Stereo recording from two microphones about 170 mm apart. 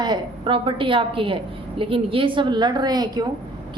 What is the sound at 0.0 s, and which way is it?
A woman's voice, 30° right (ahead or behind).